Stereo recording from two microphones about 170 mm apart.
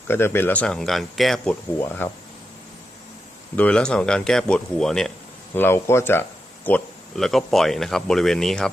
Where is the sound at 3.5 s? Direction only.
5° left (ahead or behind).